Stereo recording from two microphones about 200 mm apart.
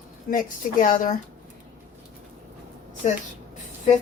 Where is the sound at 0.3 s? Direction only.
45° left (ahead or behind).